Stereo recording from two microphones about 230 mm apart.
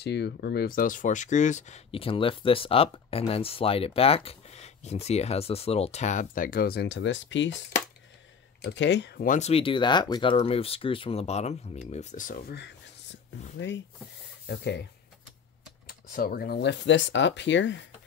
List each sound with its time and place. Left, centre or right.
0.0 s speech: left
8.6 s speech: left
13.6 s speech: left
15.9 s speech: left